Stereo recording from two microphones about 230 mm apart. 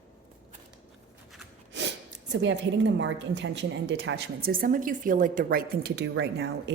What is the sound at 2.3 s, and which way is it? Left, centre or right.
A woman's voice, right.